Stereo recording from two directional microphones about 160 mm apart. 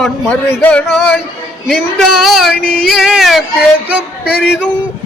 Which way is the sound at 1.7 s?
5° left (ahead or behind).